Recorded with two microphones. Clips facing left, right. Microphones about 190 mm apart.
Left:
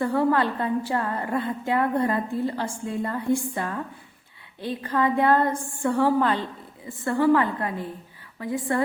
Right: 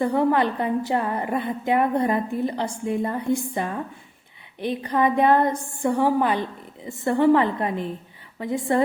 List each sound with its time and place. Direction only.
0.0 s a woman's voice: 20° right (ahead or behind)